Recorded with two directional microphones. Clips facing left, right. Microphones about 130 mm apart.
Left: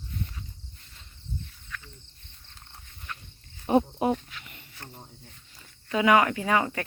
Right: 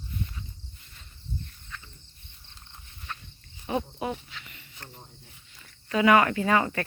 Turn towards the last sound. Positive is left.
turn(degrees=10)  # may be behind; listen again after turning